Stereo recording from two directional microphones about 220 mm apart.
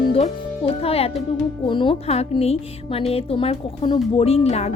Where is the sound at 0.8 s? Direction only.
25° left (ahead or behind).